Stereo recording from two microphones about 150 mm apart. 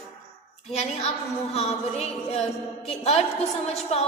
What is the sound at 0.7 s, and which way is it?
A woman's voice, 45° left (ahead or behind).